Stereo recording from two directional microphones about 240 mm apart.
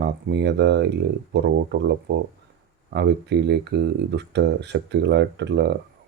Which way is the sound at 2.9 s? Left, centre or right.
Right.